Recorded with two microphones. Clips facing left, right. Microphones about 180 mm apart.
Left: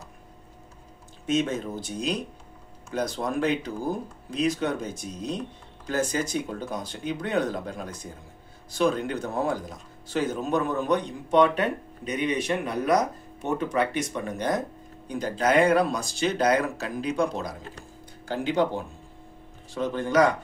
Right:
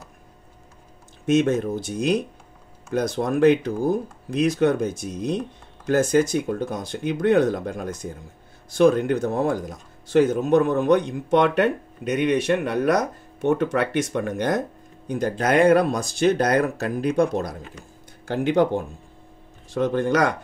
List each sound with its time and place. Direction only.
1.2 s speech: 70° right (ahead or behind)
2.9 s speech: 55° right (ahead or behind)
8.7 s speech: 60° right (ahead or behind)
15.0 s speech: 60° right (ahead or behind)